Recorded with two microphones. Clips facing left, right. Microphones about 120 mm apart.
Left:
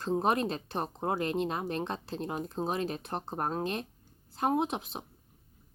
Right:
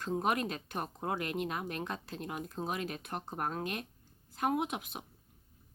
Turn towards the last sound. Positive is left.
turn(degrees=30)  # may be behind; listen again after turning